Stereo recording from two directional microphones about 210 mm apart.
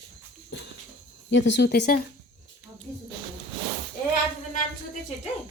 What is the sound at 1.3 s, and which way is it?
Speech, 55° left (ahead or behind).